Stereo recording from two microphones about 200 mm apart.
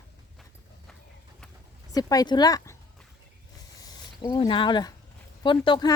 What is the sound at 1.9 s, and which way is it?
Speech, 20° left (ahead or behind).